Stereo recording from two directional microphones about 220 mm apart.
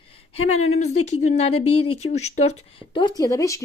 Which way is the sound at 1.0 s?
30° left (ahead or behind).